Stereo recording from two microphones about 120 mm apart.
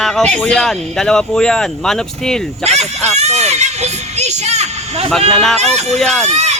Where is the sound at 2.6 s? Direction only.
65° right (ahead or behind).